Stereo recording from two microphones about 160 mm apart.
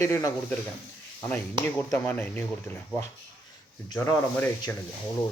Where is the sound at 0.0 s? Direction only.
20° left (ahead or behind).